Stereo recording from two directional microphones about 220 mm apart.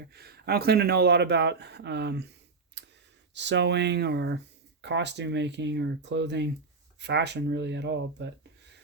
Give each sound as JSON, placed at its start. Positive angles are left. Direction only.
{"t": 0.1, "sound": "speech", "side_deg": -45}
{"t": 2.8, "sound": "sigh", "side_deg": -50}
{"t": 3.3, "sound": "speech", "side_deg": -50}